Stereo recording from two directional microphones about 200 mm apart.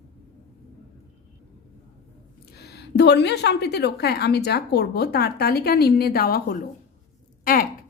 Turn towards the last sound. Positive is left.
turn(degrees=45)  # may be behind; listen again after turning